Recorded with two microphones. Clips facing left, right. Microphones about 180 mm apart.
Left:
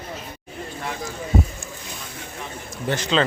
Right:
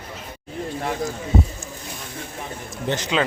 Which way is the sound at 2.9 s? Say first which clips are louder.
Left 1 dB; 15° right (ahead or behind).